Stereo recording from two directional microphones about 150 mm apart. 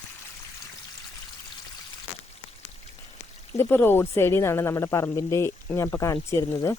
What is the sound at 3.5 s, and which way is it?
Speech, 15° left (ahead or behind).